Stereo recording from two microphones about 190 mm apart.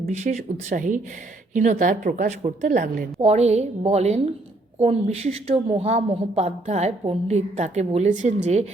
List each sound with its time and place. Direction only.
0.1 s a woman's voice: 35° right (ahead or behind)